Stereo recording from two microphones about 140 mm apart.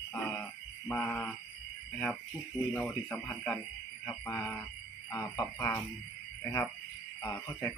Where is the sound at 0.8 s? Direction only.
10° left (ahead or behind).